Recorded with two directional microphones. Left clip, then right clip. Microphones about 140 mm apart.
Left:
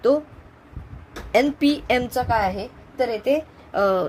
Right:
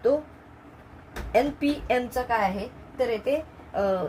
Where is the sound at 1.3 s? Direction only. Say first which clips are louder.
Left 5 dB; 65° left (ahead or behind).